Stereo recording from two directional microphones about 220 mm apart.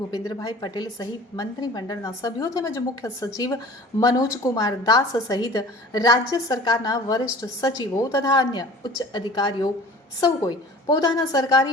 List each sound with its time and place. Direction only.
0.1 s a woman's voice: 15° left (ahead or behind)